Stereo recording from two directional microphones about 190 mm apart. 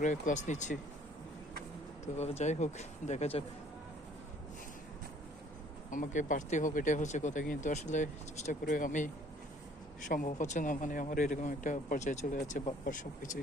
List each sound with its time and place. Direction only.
0.0 s speech: 40° left (ahead or behind)
2.1 s speech: 35° left (ahead or behind)
5.9 s speech: 45° left (ahead or behind)
10.1 s speech: 45° left (ahead or behind)